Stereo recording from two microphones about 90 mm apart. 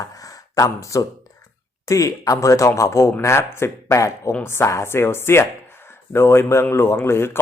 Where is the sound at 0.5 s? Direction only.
40° left (ahead or behind).